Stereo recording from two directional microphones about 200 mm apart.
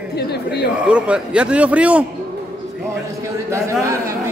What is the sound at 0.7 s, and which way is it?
A man's voice, 5° right (ahead or behind).